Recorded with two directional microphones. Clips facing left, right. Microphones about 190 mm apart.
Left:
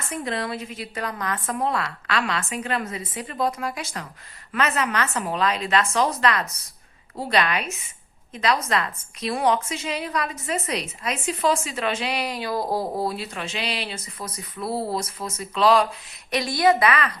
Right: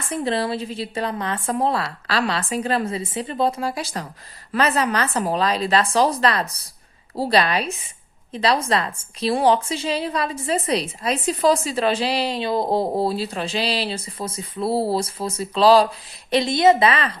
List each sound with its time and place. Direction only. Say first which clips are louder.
0.1 s a woman's voice: right 5 dB; 30° right (ahead or behind)